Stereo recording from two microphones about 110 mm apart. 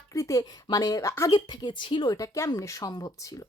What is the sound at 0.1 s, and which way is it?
Speech, 30° left (ahead or behind).